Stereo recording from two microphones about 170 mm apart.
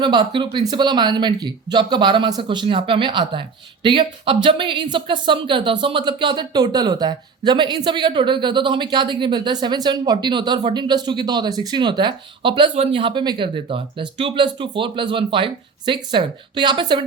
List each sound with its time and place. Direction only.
0.0 s speech: 25° right (ahead or behind)